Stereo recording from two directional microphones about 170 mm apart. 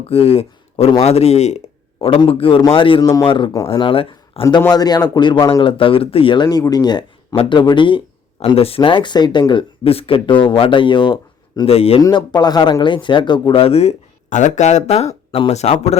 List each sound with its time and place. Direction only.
0.1 s a man's voice: 35° left (ahead or behind)
4.4 s a man's voice: 20° left (ahead or behind)
12.0 s speech: 25° left (ahead or behind); by 16.0 s 40° left (ahead or behind)